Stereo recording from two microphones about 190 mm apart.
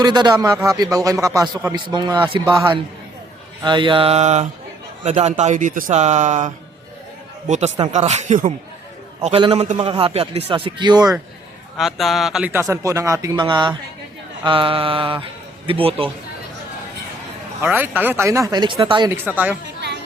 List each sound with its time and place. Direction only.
0.0 s a man's voice: 20° right (ahead or behind)
11.8 s speech: centre (ahead or behind)
12.5 s a man's voice: 15° right (ahead or behind)
17.6 s speech: 10° right (ahead or behind)
19.1 s speech: 10° right (ahead or behind)